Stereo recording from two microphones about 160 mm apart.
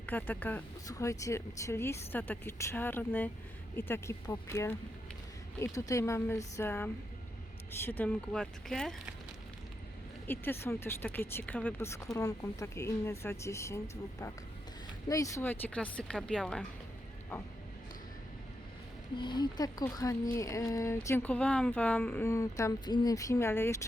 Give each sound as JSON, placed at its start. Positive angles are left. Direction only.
{"t": 0.0, "sound": "speech", "side_deg": 10}
{"t": 0.9, "sound": "speech", "side_deg": 20}
{"t": 10.2, "sound": "speech", "side_deg": 15}
{"t": 19.1, "sound": "speech", "side_deg": 30}